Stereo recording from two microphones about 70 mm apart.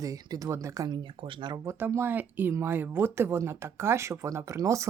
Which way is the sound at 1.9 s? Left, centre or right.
Right.